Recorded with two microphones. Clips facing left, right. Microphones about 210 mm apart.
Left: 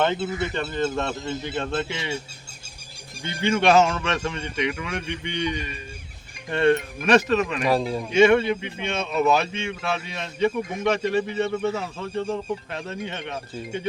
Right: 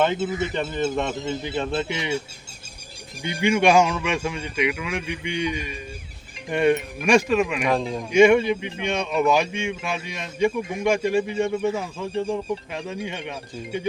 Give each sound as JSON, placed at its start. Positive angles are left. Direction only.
{"t": 0.3, "sound": "speech", "side_deg": -15}
{"t": 3.2, "sound": "speech", "side_deg": -15}
{"t": 7.7, "sound": "speech", "side_deg": 5}
{"t": 8.1, "sound": "speech", "side_deg": -15}